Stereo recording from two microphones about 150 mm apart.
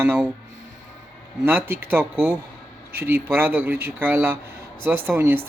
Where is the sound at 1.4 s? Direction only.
15° right (ahead or behind).